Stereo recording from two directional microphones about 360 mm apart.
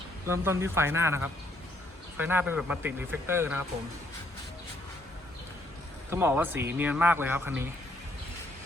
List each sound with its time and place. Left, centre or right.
0.3 s speech: centre
6.1 s speech: centre